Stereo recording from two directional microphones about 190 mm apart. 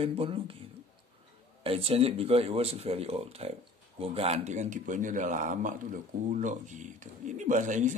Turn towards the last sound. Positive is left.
turn(degrees=-40)  # may be behind; listen again after turning